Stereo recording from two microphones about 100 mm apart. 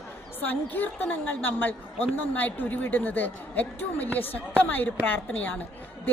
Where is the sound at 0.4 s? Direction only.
20° left (ahead or behind).